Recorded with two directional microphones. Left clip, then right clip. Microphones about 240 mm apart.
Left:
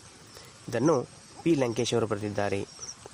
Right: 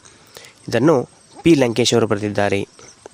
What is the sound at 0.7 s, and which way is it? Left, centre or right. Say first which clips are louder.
A man's voice: right 10 dB; right.